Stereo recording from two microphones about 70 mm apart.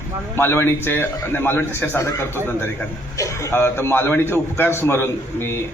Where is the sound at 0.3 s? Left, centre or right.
Left.